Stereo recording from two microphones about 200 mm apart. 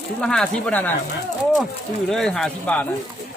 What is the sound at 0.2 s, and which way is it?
Speech, 5° left (ahead or behind).